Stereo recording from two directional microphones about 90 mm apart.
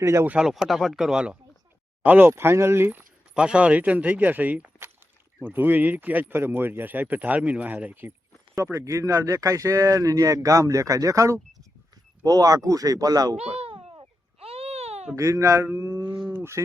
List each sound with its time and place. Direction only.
0.0 s speech: 30° right (ahead or behind)
0.3 s speech: 5° right (ahead or behind)
2.0 s speech: 25° right (ahead or behind)
3.3 s speech: 10° right (ahead or behind)
8.5 s speech: 35° right (ahead or behind)
13.6 s babbling: 90° right
14.0 s baby cry: 90° right
15.1 s speech: 35° right (ahead or behind)
16.3 s speech: 25° right (ahead or behind)